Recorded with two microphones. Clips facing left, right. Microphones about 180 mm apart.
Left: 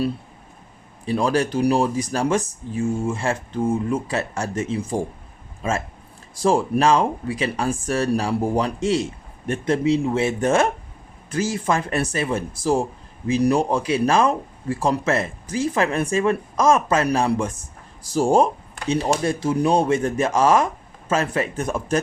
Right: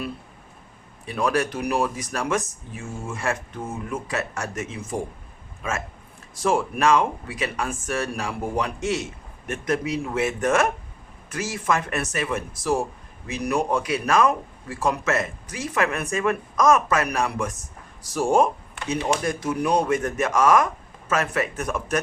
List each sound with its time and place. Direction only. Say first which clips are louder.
1.0 s speech: left 3 dB; 30° left (ahead or behind)